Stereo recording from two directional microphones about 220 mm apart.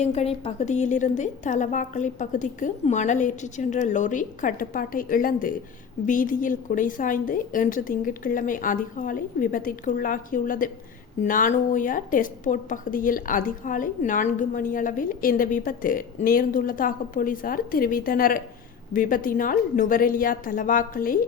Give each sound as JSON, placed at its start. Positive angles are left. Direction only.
{"t": 0.0, "sound": "a woman's voice", "side_deg": 30}